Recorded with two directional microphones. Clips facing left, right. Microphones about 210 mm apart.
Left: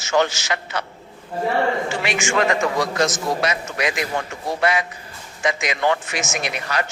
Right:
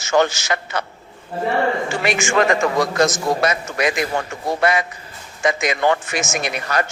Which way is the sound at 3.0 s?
45° right (ahead or behind).